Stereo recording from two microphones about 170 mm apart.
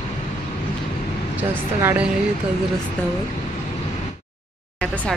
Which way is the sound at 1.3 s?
10° right (ahead or behind).